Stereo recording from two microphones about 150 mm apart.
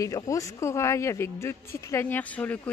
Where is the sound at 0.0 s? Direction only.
20° left (ahead or behind).